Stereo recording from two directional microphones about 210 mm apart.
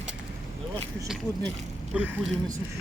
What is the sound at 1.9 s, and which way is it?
Speech, 10° right (ahead or behind).